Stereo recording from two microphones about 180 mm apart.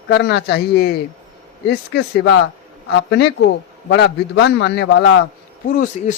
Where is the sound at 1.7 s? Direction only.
75° left (ahead or behind).